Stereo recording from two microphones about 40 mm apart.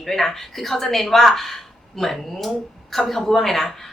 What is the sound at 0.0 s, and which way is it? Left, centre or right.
A woman's voice, centre.